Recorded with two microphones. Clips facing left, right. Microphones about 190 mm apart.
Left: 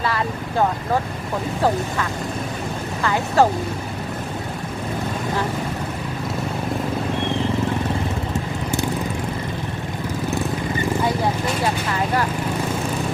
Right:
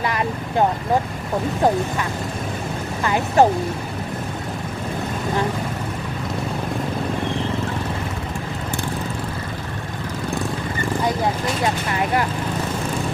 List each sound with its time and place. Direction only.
3.0 s speech: 20° right (ahead or behind)